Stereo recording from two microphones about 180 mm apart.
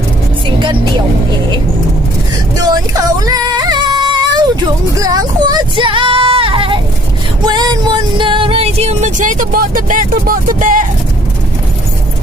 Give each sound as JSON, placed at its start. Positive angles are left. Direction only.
{"t": 2.6, "sound": "music", "side_deg": -20}
{"t": 4.9, "sound": "speech", "side_deg": -20}
{"t": 7.4, "sound": "music", "side_deg": -25}